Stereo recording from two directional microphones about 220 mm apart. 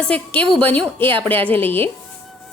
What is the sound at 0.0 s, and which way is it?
A woman's voice, 5° left (ahead or behind).